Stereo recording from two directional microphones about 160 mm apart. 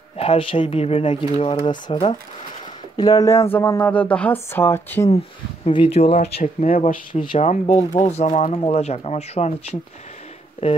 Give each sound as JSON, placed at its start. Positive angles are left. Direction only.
{"t": 0.2, "sound": "speech", "side_deg": 35}
{"t": 5.7, "sound": "speech", "side_deg": 35}